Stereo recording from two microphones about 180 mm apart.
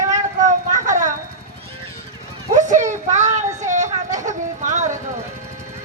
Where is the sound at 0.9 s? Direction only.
45° right (ahead or behind).